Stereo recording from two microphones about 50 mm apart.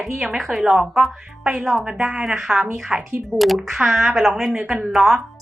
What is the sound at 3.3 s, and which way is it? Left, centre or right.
Speech, right.